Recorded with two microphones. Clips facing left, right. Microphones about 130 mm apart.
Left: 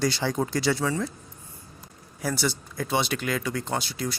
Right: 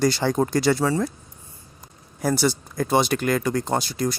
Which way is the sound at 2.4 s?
40° right (ahead or behind).